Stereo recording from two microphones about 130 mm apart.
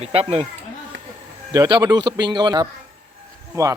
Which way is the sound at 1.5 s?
30° right (ahead or behind).